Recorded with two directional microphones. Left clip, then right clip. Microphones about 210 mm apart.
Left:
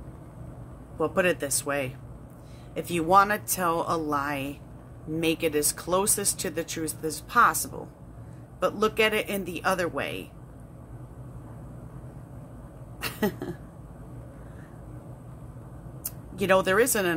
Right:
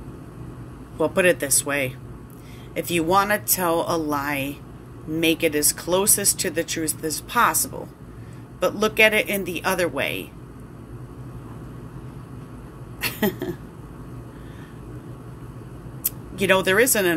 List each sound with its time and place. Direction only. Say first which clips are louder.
0.9 s speech: right 6 dB; 15° left (ahead or behind)
13.0 s a sound: right 5 dB; 20° left (ahead or behind)
16.0 s speech: right 6 dB; 20° left (ahead or behind)